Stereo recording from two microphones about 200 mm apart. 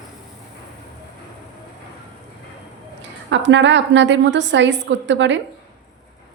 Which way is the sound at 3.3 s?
65° right (ahead or behind).